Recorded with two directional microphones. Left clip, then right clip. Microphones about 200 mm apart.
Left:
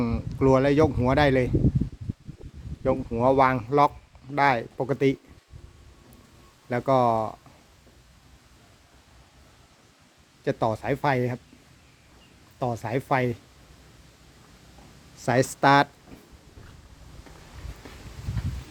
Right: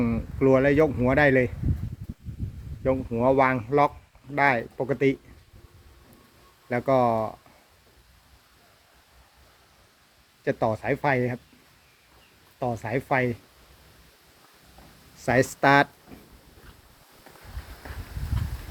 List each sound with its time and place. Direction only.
0.0 s speech: 20° left (ahead or behind)
2.8 s speech: 15° left (ahead or behind)
6.7 s speech: 20° left (ahead or behind)
10.4 s speech: 20° left (ahead or behind)
12.5 s speech: 25° left (ahead or behind)
15.2 s speech: 25° left (ahead or behind)